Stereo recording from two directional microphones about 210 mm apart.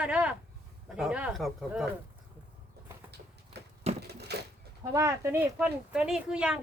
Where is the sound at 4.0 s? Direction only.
50° right (ahead or behind).